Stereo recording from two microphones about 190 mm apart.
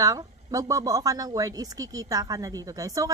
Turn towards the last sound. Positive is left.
turn(degrees=-20)  # may be behind; listen again after turning